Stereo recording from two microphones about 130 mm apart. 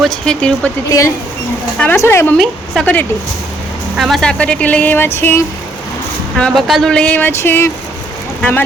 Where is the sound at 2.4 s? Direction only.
5° left (ahead or behind).